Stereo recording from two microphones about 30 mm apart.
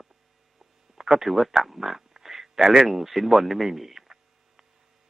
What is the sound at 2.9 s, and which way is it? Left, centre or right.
Speech, centre.